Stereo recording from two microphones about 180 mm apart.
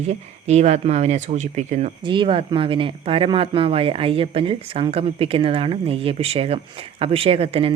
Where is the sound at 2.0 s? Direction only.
25° right (ahead or behind).